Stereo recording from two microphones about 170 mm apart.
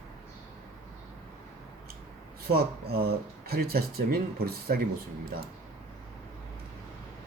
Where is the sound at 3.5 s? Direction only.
65° right (ahead or behind).